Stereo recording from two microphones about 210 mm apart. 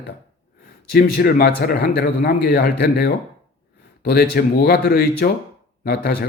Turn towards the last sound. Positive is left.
turn(degrees=45)  # may be behind; listen again after turning